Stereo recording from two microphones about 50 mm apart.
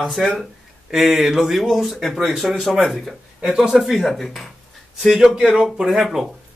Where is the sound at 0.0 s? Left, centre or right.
Centre.